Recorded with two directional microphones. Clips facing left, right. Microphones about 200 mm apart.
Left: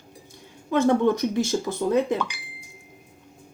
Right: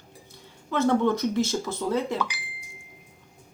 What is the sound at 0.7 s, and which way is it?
Speech, 15° left (ahead or behind).